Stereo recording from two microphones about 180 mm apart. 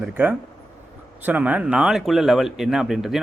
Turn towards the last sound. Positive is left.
turn(degrees=0)  # may be behind; listen again after turning